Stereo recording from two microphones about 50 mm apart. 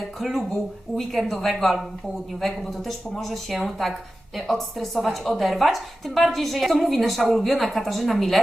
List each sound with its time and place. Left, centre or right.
0.2 s speech: centre